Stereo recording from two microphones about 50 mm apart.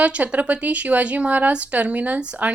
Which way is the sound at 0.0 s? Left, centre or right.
Right.